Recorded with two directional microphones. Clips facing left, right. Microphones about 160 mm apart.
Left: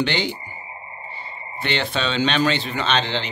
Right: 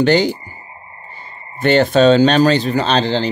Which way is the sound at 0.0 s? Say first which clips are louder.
Right 10 dB; 40° right (ahead or behind).